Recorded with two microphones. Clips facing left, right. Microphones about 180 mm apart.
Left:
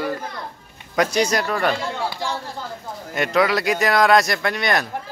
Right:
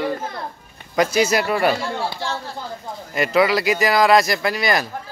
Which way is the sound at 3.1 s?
Centre (ahead or behind).